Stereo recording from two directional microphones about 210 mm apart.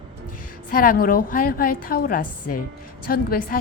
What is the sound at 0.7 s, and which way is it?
A woman's voice, 40° left (ahead or behind).